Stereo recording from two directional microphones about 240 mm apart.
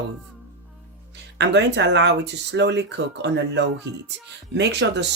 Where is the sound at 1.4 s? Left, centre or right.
Right.